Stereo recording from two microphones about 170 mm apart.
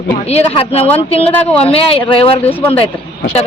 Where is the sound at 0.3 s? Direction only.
35° left (ahead or behind).